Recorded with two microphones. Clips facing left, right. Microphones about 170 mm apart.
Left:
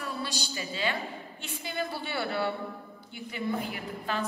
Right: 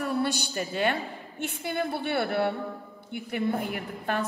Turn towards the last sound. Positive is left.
turn(degrees=-60)  # may be behind; listen again after turning